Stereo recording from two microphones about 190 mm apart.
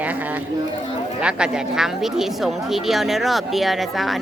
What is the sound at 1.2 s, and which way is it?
Speech, 5° right (ahead or behind).